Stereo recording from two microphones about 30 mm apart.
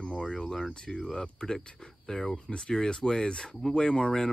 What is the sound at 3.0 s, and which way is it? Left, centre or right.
Speech, left.